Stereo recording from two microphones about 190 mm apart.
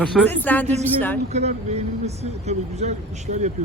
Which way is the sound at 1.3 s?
35° right (ahead or behind).